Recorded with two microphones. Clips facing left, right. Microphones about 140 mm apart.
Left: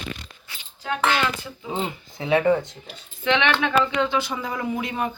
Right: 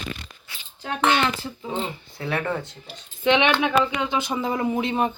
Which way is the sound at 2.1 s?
15° left (ahead or behind).